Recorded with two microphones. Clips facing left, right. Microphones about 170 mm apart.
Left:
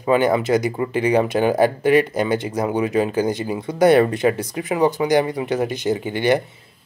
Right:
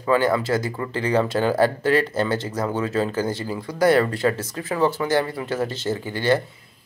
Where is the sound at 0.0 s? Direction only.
20° left (ahead or behind).